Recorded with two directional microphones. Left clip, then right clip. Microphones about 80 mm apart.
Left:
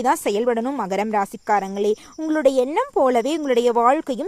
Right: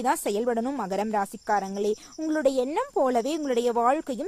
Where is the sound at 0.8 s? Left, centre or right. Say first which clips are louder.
Left 5 dB; left.